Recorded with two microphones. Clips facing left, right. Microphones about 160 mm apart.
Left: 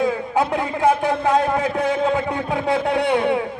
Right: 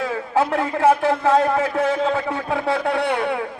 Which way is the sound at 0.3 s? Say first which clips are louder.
Right 5 dB; 15° left (ahead or behind).